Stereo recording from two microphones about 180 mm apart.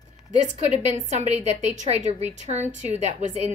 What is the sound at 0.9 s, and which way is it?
A woman's voice, 40° right (ahead or behind).